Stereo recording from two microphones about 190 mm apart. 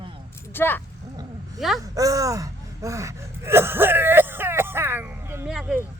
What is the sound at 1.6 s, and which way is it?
Speech, centre (ahead or behind).